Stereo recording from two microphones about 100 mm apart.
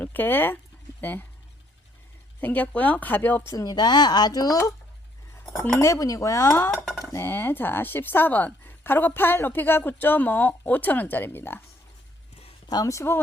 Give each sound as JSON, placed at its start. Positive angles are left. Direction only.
{"t": 0.0, "sound": "speech", "side_deg": 20}
{"t": 2.4, "sound": "speech", "side_deg": 15}
{"t": 3.5, "sound": "speech", "side_deg": 40}
{"t": 5.8, "sound": "cutlery", "side_deg": 30}
{"t": 7.0, "sound": "speech", "side_deg": 30}
{"t": 12.6, "sound": "cutlery", "side_deg": 35}